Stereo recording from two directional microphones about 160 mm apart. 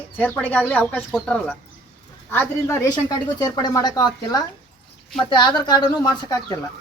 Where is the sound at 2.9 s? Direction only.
25° left (ahead or behind).